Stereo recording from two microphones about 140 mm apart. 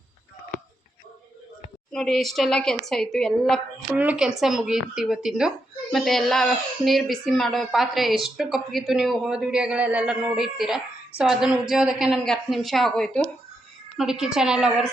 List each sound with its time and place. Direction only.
1.9 s speech: centre (ahead or behind)
3.9 s speech: 10° right (ahead or behind)